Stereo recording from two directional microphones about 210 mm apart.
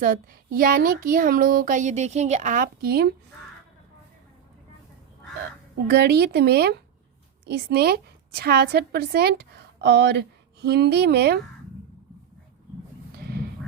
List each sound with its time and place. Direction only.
0.0 s speech: 45° right (ahead or behind)
5.7 s a woman's voice: 50° right (ahead or behind)
13.1 s a sound: 50° right (ahead or behind)